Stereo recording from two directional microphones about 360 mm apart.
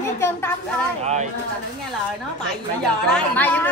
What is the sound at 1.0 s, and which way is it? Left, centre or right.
Speech, centre.